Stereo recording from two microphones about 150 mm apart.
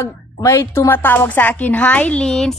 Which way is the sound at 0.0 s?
20° left (ahead or behind).